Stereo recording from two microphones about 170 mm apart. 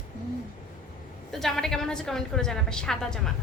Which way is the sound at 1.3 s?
Centre (ahead or behind).